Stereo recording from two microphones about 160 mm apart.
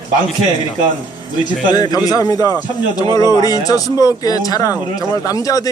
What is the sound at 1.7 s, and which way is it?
A man's voice, 25° left (ahead or behind).